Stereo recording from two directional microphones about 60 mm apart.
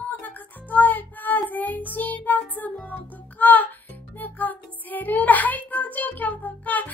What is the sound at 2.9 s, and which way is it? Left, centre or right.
Music, left.